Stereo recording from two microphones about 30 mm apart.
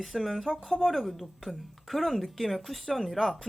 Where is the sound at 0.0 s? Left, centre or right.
Centre.